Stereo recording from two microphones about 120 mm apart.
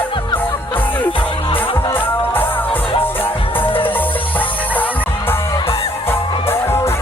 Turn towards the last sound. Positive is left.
turn(degrees=20)  # may be behind; listen again after turning